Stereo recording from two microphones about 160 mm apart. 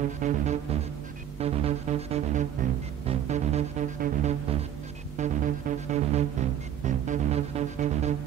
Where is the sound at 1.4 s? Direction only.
40° right (ahead or behind).